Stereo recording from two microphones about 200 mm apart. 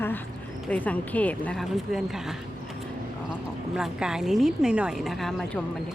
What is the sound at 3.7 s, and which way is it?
Speech, 5° right (ahead or behind).